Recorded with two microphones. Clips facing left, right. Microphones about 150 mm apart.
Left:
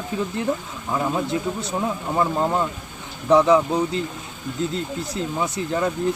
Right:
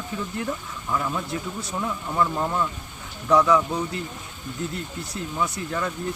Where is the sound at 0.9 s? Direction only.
30° left (ahead or behind).